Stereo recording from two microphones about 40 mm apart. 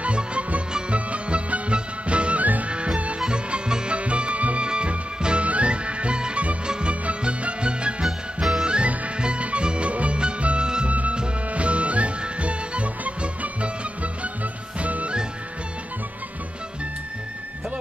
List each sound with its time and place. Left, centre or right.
0.0 s music: right
8.0 s music: centre
8.6 s music: right
10.9 s music: right